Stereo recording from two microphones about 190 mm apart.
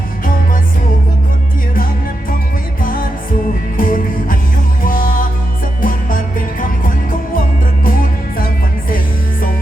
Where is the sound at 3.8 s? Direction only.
45° left (ahead or behind).